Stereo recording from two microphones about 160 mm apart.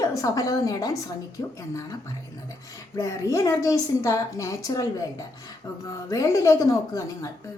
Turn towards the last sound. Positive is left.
turn(degrees=20)  # may be behind; listen again after turning